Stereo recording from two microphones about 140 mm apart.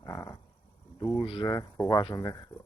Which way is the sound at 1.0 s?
20° left (ahead or behind).